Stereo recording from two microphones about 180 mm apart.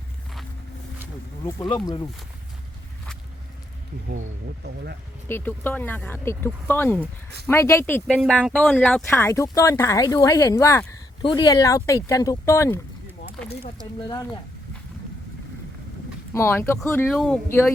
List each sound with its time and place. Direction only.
1.6 s speech: 25° left (ahead or behind)
5.3 s speech: 10° left (ahead or behind)
8.0 s speech: centre (ahead or behind)
16.3 s speech: 15° left (ahead or behind)